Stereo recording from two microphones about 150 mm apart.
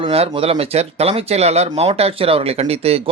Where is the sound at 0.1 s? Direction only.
40° right (ahead or behind).